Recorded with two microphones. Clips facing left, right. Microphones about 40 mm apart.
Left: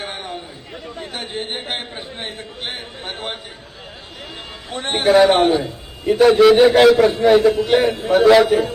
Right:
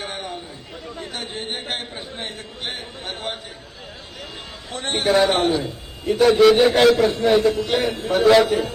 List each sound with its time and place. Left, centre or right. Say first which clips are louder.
0.0 s a sound: left 1 dB; centre
0.9 s a man's voice: left 3 dB; centre
4.7 s a man's voice: left 4 dB; centre